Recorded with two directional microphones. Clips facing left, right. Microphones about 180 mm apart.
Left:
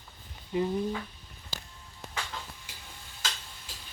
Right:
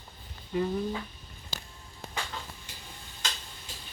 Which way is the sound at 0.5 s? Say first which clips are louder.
Even; 20° left (ahead or behind).